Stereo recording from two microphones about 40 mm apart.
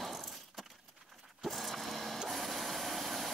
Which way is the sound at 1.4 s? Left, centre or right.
Centre.